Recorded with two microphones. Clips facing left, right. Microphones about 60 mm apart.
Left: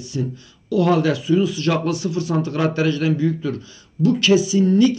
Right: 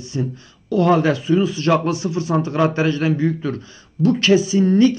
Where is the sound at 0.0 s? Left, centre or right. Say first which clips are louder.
Right 1 dB; right.